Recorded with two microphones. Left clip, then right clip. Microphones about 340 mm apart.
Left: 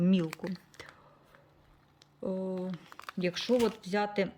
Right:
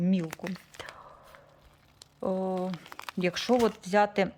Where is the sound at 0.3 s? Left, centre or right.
Centre.